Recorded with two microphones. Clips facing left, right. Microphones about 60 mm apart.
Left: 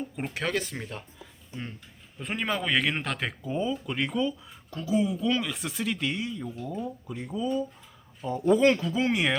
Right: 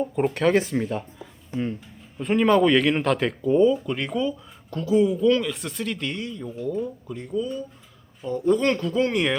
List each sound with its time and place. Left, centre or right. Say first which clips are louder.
0.2 s speech: right 10 dB; centre
1.5 s speech: right 11 dB; right
2.2 s speech: right 11 dB; centre